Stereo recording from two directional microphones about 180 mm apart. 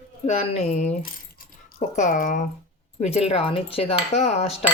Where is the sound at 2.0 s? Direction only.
50° left (ahead or behind).